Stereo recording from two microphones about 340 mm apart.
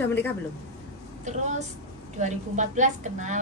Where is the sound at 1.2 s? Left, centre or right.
Right.